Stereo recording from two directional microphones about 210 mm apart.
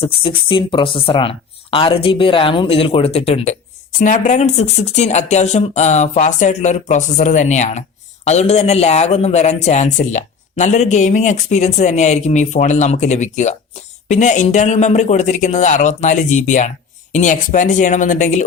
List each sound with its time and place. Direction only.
0.0 s speech: 25° left (ahead or behind)